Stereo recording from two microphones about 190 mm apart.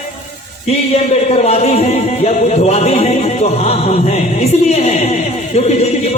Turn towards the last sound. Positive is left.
turn(degrees=35)  # may be behind; listen again after turning